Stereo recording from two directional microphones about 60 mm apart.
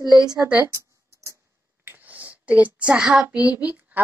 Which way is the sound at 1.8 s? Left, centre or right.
Right.